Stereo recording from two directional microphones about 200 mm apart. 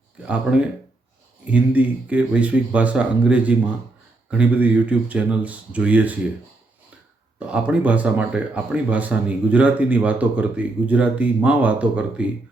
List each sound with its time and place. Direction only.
1.5 s speech: 5° right (ahead or behind)
7.3 s speech: 5° right (ahead or behind)